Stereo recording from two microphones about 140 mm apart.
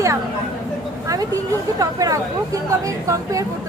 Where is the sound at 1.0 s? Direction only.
25° right (ahead or behind).